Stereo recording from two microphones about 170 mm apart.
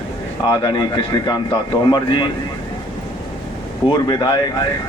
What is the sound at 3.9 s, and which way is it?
Speech, 25° left (ahead or behind).